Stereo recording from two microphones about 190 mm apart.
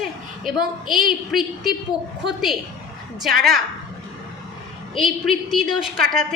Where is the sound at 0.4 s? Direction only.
Centre (ahead or behind).